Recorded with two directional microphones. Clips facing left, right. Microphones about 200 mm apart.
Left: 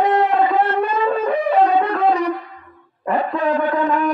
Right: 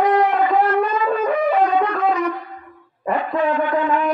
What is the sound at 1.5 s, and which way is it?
Shofar, 30° left (ahead or behind).